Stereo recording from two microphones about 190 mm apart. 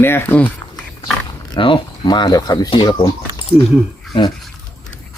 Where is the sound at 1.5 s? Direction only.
25° left (ahead or behind).